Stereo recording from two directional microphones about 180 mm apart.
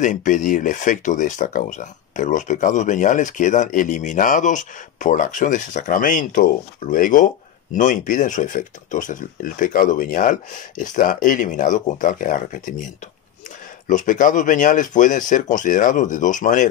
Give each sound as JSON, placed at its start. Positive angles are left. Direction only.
{"t": 0.0, "sound": "speech", "side_deg": 45}
{"t": 13.8, "sound": "speech", "side_deg": 45}